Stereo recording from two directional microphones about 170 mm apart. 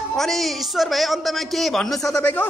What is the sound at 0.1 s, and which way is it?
A man's voice, centre (ahead or behind).